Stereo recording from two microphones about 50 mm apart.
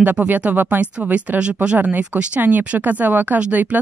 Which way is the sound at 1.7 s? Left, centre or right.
Right.